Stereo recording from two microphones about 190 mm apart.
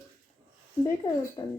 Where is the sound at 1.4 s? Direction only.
25° left (ahead or behind).